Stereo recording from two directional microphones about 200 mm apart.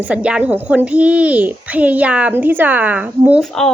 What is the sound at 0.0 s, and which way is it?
A woman's voice, 5° right (ahead or behind).